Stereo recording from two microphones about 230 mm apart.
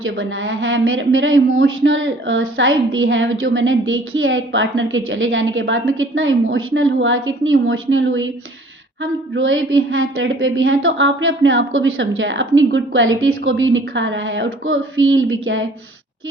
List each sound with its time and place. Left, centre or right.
0.0 s a woman's voice: right